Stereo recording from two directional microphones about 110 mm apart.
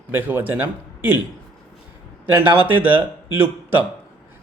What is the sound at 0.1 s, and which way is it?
Speech, 15° right (ahead or behind).